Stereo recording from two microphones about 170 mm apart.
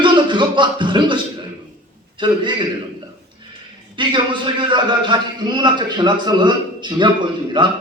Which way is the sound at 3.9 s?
30° right (ahead or behind).